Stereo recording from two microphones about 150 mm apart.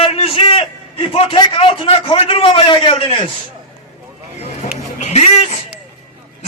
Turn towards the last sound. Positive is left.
turn(degrees=45)  # may be behind; listen again after turning